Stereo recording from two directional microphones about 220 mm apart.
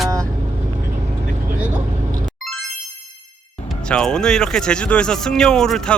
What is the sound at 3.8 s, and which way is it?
Speech, 5° left (ahead or behind).